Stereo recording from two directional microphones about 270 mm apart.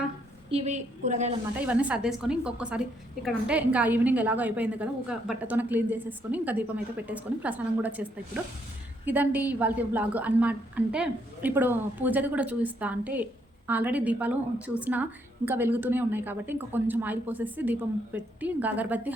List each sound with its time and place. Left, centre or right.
0.5 s a woman's voice: right
1.5 s a woman's voice: centre